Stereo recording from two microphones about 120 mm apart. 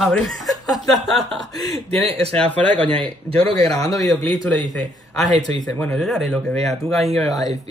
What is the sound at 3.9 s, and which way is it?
Speech, 30° left (ahead or behind).